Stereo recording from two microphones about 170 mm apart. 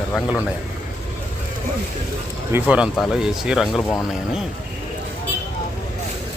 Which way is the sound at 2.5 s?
10° right (ahead or behind).